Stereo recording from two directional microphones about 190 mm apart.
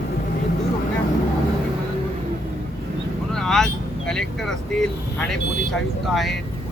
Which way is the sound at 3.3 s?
Centre (ahead or behind).